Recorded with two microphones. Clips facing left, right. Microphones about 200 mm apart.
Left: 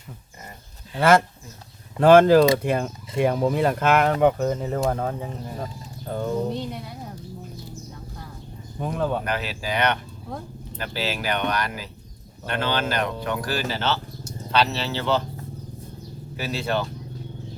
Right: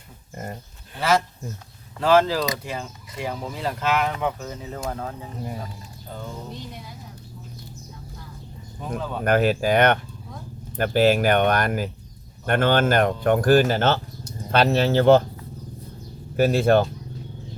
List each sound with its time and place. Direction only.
0.9 s speech: 55° left (ahead or behind)
9.2 s speech: 50° right (ahead or behind)
16.4 s speech: 50° right (ahead or behind)